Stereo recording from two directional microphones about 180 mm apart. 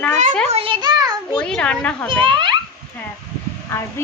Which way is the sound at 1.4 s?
5° left (ahead or behind).